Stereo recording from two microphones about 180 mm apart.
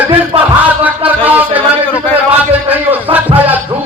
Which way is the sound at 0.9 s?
10° right (ahead or behind).